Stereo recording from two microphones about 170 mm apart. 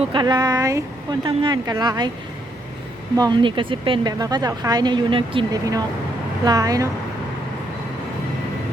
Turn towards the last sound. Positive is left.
turn(degrees=-20)  # may be behind; listen again after turning